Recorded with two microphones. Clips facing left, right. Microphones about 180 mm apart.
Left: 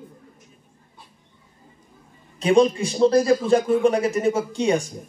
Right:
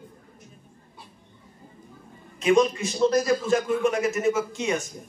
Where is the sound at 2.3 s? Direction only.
30° left (ahead or behind).